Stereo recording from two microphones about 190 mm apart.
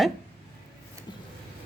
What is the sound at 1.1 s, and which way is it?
Vehicle, 25° left (ahead or behind).